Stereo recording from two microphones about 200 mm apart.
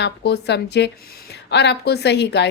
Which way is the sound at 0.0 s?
55° left (ahead or behind).